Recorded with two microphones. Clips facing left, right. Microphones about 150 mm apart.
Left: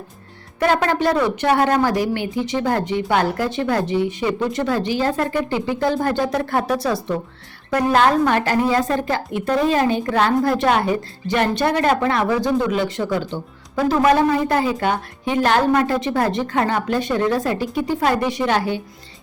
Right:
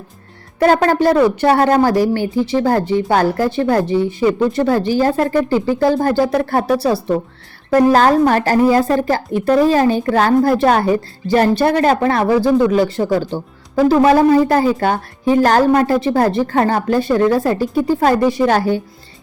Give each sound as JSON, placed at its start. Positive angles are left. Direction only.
{"t": 0.6, "sound": "a woman's voice", "side_deg": -40}